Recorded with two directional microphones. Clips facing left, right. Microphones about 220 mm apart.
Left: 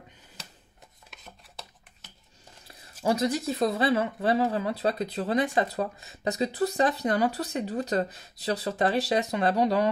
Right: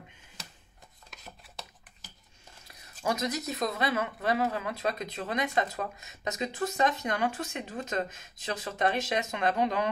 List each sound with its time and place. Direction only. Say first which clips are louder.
2.7 s speech: left 5 dB; 30° left (ahead or behind)